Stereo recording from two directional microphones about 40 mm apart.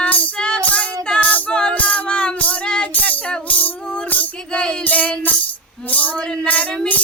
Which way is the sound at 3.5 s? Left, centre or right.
Left.